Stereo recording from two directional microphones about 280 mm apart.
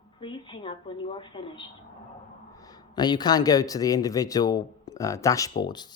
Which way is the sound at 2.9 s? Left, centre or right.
Centre.